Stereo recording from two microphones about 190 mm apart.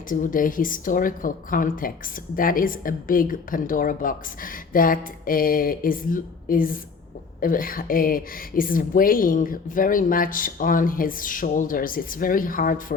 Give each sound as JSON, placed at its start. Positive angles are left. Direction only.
{"t": 0.1, "sound": "a woman's voice", "side_deg": 45}